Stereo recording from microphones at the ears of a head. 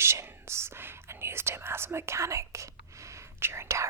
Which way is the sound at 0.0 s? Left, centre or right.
Right.